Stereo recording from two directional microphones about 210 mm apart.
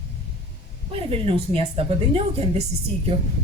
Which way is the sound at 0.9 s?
25° right (ahead or behind).